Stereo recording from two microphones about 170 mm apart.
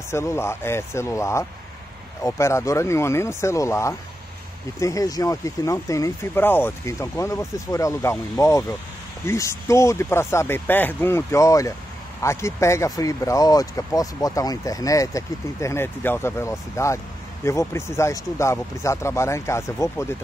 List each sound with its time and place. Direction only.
0.1 s speech: 15° left (ahead or behind)